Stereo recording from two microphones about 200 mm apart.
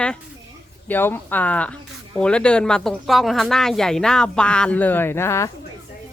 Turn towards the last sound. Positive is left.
turn(degrees=15)  # may be behind; listen again after turning